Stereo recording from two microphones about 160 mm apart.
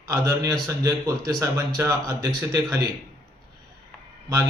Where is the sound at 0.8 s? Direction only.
20° right (ahead or behind).